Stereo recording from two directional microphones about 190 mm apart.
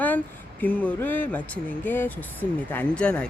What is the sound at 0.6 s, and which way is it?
Speech, 10° left (ahead or behind).